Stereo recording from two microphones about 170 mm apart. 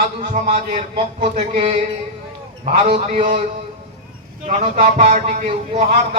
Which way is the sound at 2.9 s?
40° right (ahead or behind).